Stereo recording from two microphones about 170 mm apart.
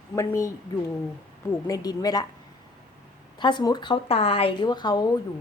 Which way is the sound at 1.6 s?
20° left (ahead or behind).